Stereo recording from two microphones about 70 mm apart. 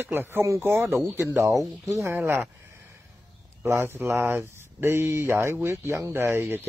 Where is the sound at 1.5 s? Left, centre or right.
Right.